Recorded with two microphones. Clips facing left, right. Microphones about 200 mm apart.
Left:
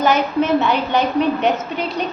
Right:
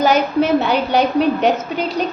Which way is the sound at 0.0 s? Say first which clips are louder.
Right 2 dB; 40° right (ahead or behind).